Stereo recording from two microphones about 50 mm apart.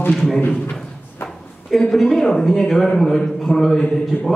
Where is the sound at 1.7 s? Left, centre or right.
Centre.